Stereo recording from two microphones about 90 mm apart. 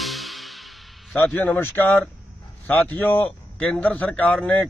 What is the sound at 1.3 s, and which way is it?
Speech, 15° left (ahead or behind).